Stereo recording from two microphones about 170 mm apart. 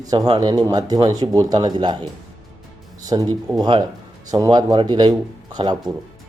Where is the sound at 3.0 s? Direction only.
25° right (ahead or behind).